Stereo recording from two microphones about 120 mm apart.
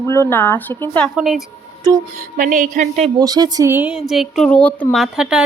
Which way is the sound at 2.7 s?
85° right.